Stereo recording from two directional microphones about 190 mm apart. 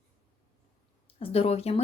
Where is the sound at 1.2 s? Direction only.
30° left (ahead or behind).